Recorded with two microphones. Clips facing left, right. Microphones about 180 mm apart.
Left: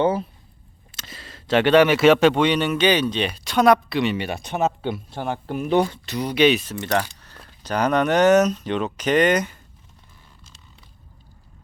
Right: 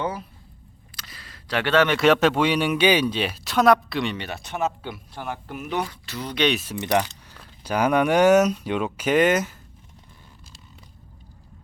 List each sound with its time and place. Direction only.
0.0 s speech: 25° left (ahead or behind)
6.1 s speech: 10° left (ahead or behind)
6.6 s speech: 10° right (ahead or behind)